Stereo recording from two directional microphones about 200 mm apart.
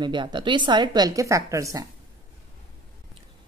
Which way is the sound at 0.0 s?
25° right (ahead or behind).